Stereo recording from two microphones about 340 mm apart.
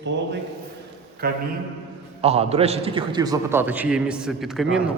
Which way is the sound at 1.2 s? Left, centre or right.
Right.